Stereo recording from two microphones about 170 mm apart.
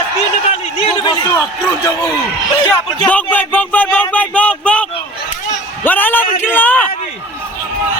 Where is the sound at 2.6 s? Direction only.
25° left (ahead or behind).